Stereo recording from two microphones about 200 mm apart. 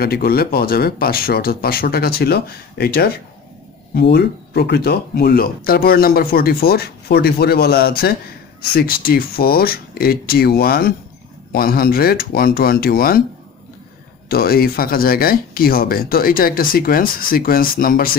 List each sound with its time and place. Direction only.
0.0 s speech: 50° left (ahead or behind)
14.3 s speech: 50° left (ahead or behind)